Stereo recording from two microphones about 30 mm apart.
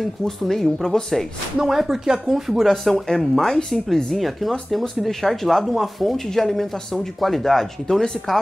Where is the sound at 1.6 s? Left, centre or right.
Centre.